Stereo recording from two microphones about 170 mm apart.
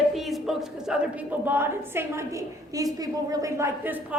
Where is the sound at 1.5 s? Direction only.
15° right (ahead or behind).